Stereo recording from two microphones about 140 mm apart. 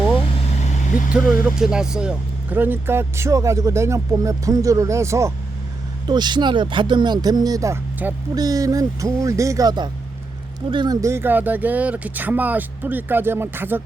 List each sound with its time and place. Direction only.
1.1 s speech: 5° right (ahead or behind); by 5.3 s 20° right (ahead or behind)
6.1 s speech: 30° right (ahead or behind)
11.0 s speech: 15° right (ahead or behind)